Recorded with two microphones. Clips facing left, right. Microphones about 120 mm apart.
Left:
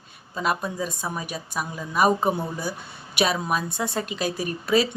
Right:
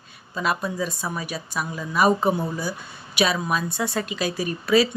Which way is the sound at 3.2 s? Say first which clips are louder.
Right 1 dB; 50° left (ahead or behind).